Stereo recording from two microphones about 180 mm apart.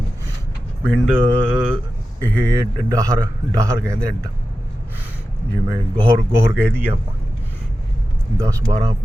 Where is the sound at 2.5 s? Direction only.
15° right (ahead or behind).